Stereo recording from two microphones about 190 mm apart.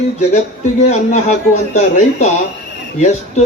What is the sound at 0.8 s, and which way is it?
A man's voice, 35° left (ahead or behind).